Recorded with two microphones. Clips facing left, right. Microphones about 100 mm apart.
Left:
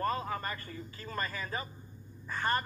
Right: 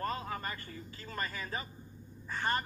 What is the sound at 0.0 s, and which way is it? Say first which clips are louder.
Speech: left 3 dB; 30° left (ahead or behind).